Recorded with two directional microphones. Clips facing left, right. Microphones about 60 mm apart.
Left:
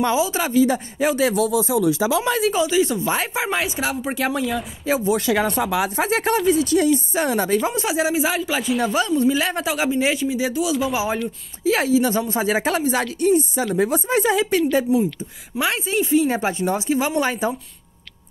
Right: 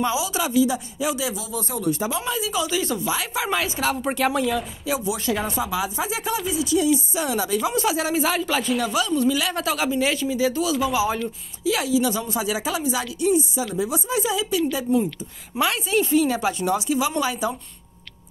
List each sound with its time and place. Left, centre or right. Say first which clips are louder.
0.2 s speech: left 4 dB; left
0.6 s speech: left 4 dB; left
2.6 s a man's voice: left 5 dB; left
3.9 s speech: right 1 dB; centre
4.8 s speech: left 7 dB; left
5.1 s speech: left 6 dB; left
5.5 s speech: left 4 dB; left
8.1 s a man's voice: left 1 dB; centre
9.1 s a man's voice: left 3 dB; centre
11.6 s speech: left 3 dB; left
14.9 s a man's voice: left 2 dB; centre
15.6 s speech: even; left
16.3 s speech: left 1 dB; left